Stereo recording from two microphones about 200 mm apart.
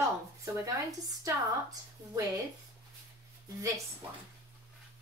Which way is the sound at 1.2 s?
15° right (ahead or behind).